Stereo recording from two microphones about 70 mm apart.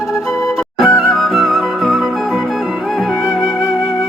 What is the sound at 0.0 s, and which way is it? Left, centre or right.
Music, left.